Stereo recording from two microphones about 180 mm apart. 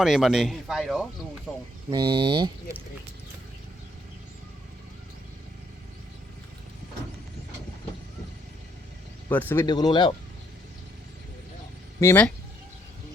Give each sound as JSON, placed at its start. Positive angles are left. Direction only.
{"t": 0.0, "sound": "a man's voice", "side_deg": 0}
{"t": 1.9, "sound": "speech", "side_deg": -25}
{"t": 9.3, "sound": "speech", "side_deg": 10}
{"t": 9.6, "sound": "speech", "side_deg": 25}
{"t": 11.9, "sound": "speech", "side_deg": 10}